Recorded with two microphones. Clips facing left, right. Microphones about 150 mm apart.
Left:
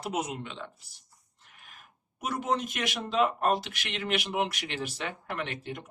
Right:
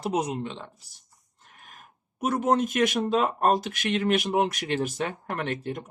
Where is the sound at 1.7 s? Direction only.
50° right (ahead or behind).